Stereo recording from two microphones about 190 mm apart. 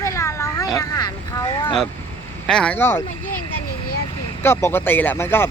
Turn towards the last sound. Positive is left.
turn(degrees=10)  # may be behind; listen again after turning